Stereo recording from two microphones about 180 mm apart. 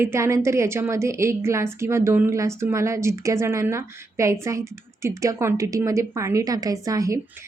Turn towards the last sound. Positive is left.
turn(degrees=-20)  # may be behind; listen again after turning